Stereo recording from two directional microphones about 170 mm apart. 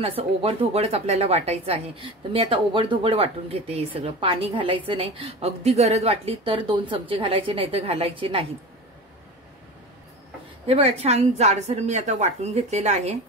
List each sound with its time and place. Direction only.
0.0 s speech: 35° right (ahead or behind)
10.7 s speech: 35° right (ahead or behind)